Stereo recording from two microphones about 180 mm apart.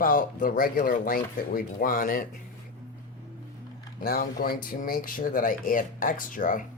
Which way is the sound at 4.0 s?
55° left (ahead or behind).